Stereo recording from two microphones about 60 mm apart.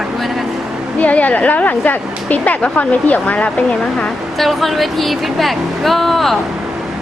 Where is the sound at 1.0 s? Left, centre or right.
Left.